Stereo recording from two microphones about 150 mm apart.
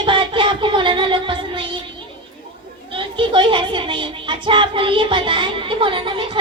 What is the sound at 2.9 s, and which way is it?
A woman's voice, 35° right (ahead or behind).